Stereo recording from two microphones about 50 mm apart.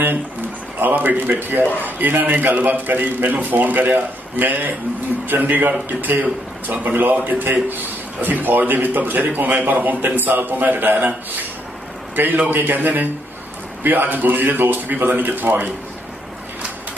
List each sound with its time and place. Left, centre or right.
0.7 s a man's voice: right
12.4 s a man's voice: right